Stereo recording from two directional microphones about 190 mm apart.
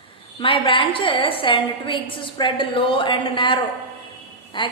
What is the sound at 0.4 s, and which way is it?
A woman's voice, 30° left (ahead or behind).